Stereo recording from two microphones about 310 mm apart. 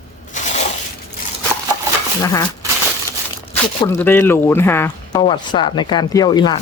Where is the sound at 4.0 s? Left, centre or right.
Centre.